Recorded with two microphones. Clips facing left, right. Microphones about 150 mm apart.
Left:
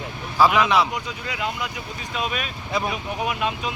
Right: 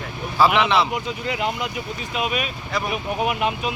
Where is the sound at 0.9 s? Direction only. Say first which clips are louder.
Right 4 dB; 25° right (ahead or behind).